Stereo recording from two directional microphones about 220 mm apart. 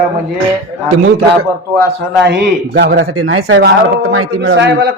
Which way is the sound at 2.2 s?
50° right (ahead or behind).